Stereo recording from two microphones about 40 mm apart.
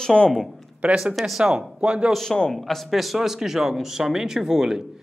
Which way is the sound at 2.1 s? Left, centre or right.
Centre.